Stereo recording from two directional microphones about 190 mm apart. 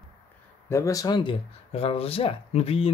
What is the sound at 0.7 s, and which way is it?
Speech, 15° left (ahead or behind).